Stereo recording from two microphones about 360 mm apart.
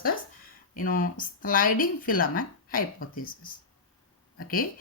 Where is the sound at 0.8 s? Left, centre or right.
Left.